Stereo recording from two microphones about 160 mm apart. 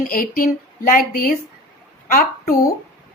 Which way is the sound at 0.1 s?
60° left (ahead or behind).